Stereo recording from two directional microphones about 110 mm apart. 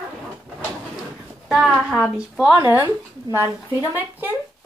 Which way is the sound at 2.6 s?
20° right (ahead or behind).